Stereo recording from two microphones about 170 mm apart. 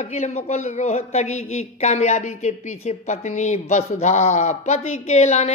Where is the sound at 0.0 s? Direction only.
40° left (ahead or behind).